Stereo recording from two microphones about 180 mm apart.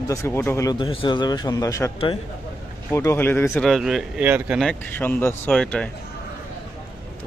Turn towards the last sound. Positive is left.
turn(degrees=5)  # may be behind; listen again after turning